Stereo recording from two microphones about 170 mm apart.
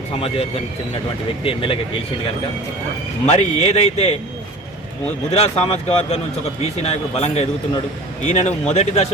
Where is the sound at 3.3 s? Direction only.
40° left (ahead or behind).